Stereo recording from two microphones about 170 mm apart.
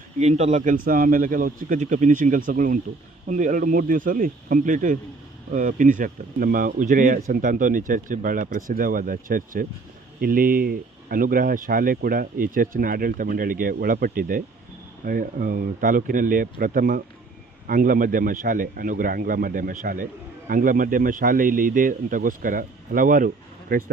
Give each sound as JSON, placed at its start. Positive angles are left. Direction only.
{"t": 0.2, "sound": "speech", "side_deg": -40}